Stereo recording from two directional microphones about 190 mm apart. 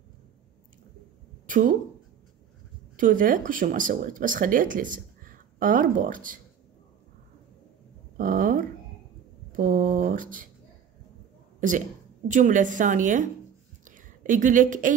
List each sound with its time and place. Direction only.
1.5 s a woman's voice: 45° right (ahead or behind)
3.0 s speech: 45° right (ahead or behind)
8.2 s a sound: 45° right (ahead or behind)
9.6 s speech: 45° right (ahead or behind)
11.6 s a woman's voice: 45° right (ahead or behind)
13.8 s a sound: 45° right (ahead or behind)